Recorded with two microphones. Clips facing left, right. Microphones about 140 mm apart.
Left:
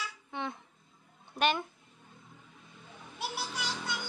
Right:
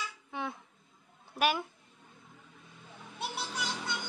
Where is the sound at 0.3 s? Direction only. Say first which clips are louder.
Even; 5° right (ahead or behind).